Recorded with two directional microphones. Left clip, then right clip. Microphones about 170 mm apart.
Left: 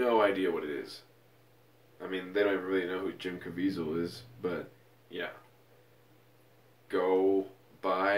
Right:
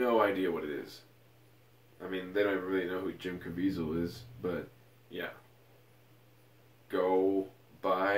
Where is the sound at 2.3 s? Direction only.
10° right (ahead or behind).